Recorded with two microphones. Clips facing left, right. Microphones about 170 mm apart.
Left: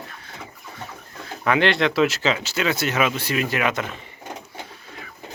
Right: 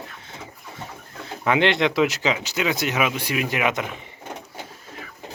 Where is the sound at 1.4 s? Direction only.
20° right (ahead or behind).